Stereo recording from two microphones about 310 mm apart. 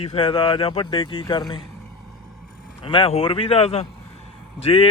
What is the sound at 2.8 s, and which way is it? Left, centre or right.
A man's voice, centre.